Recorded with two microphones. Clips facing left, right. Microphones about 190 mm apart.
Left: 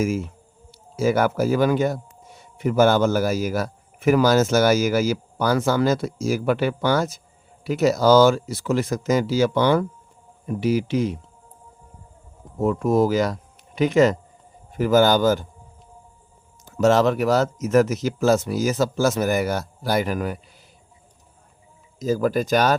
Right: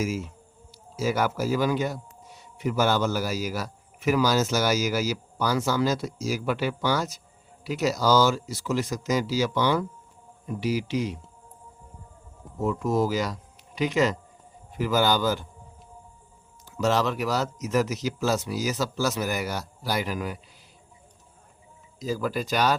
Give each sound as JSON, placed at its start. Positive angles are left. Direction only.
{"t": 0.0, "sound": "a man's voice", "side_deg": 55}
{"t": 12.5, "sound": "speech", "side_deg": 55}
{"t": 16.6, "sound": "speech", "side_deg": 50}
{"t": 21.9, "sound": "speech", "side_deg": 45}